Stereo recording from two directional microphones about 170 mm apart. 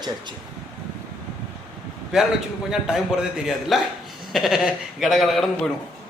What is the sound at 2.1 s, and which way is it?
A man's voice, 5° right (ahead or behind).